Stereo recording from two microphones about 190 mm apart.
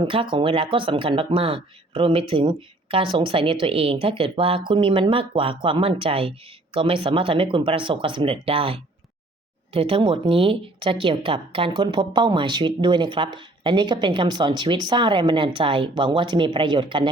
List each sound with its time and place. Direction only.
0.0 s speech: 25° right (ahead or behind)